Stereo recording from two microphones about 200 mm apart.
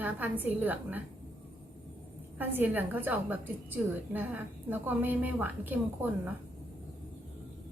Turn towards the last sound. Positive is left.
turn(degrees=-10)  # may be behind; listen again after turning